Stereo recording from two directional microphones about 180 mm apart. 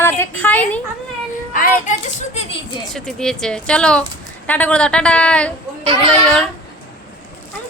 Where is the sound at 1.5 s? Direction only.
40° left (ahead or behind).